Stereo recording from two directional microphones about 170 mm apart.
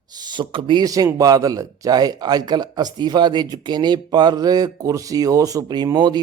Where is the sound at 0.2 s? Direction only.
25° right (ahead or behind).